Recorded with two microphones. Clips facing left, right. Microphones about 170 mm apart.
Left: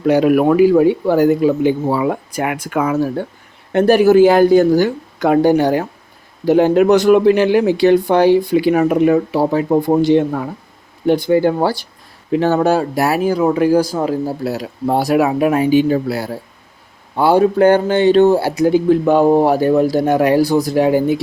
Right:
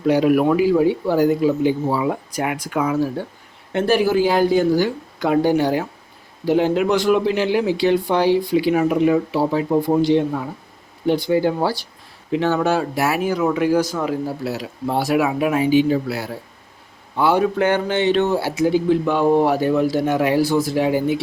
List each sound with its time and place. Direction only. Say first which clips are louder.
0.1 s speech: left 4 dB; 60° left (ahead or behind)
12.3 s speech: left 5 dB; 45° left (ahead or behind)